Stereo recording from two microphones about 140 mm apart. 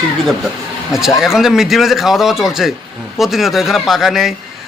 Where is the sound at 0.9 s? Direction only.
Centre (ahead or behind).